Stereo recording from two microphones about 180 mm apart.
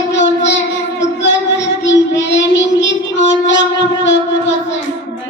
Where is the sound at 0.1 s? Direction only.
85° left.